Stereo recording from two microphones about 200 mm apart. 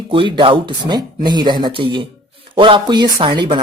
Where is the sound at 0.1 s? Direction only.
25° right (ahead or behind).